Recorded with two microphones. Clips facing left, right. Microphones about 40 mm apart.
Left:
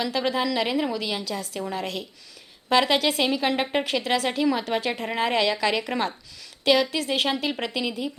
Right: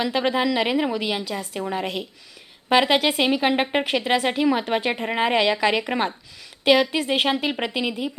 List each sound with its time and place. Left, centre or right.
0.0 s speech: right